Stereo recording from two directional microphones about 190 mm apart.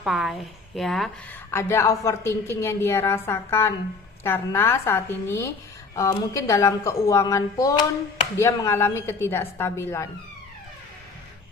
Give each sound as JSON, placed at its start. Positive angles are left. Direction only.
{"t": 0.0, "sound": "speech", "side_deg": 0}
{"t": 1.5, "sound": "a woman's voice", "side_deg": 15}